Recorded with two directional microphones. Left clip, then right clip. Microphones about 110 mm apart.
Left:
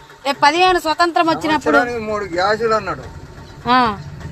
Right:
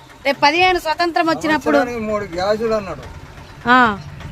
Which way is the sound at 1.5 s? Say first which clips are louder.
Left 1 dB; 90° right.